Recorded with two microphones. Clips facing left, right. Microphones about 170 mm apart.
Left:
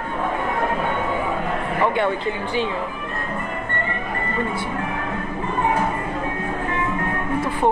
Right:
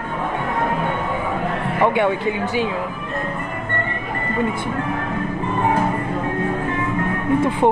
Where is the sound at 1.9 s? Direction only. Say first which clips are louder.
Right 3 dB; 15° right (ahead or behind).